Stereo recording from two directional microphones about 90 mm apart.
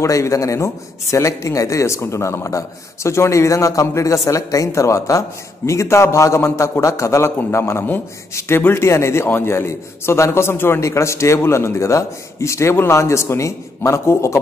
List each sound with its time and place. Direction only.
0.0 s a man's voice: 35° left (ahead or behind)